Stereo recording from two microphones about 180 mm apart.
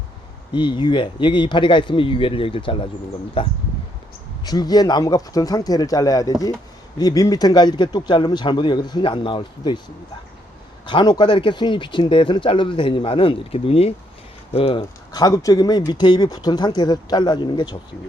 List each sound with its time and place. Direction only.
0.5 s speech: 25° left (ahead or behind)
10.8 s speech: 25° left (ahead or behind)